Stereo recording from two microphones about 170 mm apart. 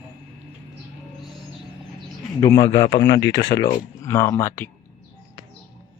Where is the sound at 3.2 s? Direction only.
90° left.